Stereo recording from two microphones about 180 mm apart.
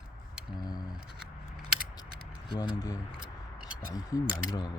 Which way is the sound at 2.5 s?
25° left (ahead or behind).